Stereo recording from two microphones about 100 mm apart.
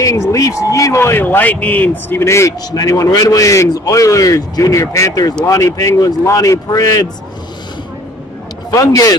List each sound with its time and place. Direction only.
0.0 s a man's voice: 35° left (ahead or behind)
8.6 s speech: 35° left (ahead or behind)